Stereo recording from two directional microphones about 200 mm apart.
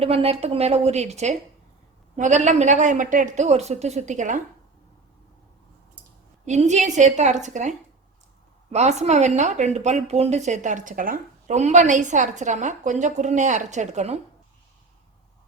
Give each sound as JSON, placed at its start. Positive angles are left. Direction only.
{"t": 0.0, "sound": "a woman's voice", "side_deg": -30}
{"t": 6.4, "sound": "a woman's voice", "side_deg": -35}